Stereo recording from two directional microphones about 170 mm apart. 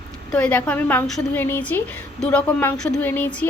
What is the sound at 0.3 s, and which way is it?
A woman's voice, 5° left (ahead or behind).